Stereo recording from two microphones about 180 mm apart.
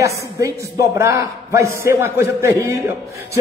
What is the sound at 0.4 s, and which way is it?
Speech, 15° right (ahead or behind).